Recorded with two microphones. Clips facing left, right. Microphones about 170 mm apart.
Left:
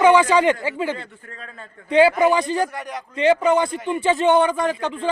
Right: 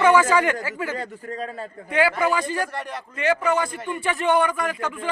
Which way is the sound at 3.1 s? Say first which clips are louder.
Left 5 dB; 20° left (ahead or behind).